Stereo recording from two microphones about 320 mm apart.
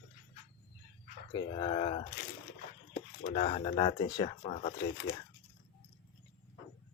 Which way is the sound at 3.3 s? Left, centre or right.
Centre.